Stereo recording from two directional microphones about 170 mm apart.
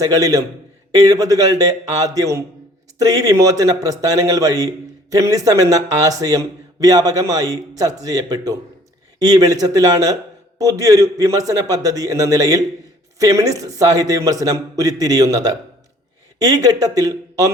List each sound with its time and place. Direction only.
0.0 s speech: 20° right (ahead or behind)
16.6 s speech: 20° right (ahead or behind)